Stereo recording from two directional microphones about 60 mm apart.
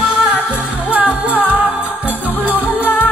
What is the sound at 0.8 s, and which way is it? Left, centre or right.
Music, right.